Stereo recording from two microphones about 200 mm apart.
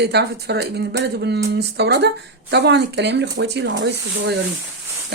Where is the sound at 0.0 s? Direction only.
55° right (ahead or behind).